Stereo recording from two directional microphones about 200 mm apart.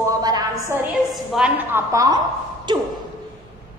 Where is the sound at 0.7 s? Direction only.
5° right (ahead or behind).